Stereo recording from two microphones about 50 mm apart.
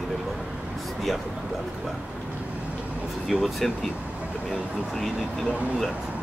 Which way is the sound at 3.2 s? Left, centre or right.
Centre.